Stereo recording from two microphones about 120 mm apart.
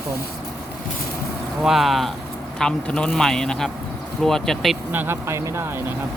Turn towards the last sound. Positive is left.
turn(degrees=-20)  # may be behind; listen again after turning